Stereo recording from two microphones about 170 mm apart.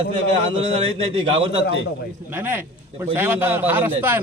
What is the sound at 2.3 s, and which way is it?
A man's voice, 10° right (ahead or behind).